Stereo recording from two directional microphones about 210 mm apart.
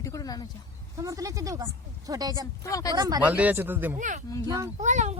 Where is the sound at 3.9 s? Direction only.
35° right (ahead or behind).